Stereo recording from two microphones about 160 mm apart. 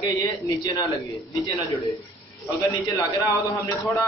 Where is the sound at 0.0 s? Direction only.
20° left (ahead or behind).